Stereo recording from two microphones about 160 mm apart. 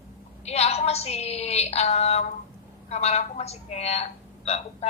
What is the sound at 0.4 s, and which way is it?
A woman's voice, 40° left (ahead or behind).